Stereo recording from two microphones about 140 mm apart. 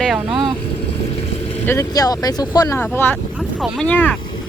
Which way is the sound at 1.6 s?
20° left (ahead or behind).